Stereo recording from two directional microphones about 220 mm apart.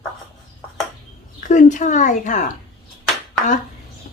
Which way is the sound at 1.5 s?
35° left (ahead or behind).